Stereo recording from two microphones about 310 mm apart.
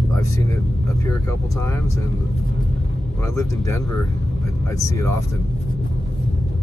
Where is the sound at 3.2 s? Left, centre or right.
Centre.